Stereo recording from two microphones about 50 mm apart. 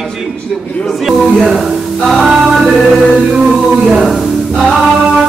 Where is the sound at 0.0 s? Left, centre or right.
Centre.